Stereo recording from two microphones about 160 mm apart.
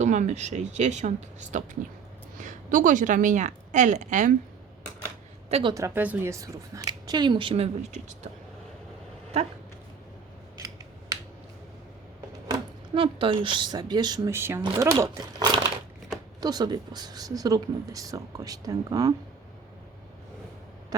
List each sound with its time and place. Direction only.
0.0 s a woman's voice: 50° right (ahead or behind)
5.5 s a woman's voice: 40° right (ahead or behind)
5.7 s speech: 15° right (ahead or behind); by 8.3 s 45° right (ahead or behind)
12.5 s speech: 30° right (ahead or behind)
14.3 s speech: 15° right (ahead or behind)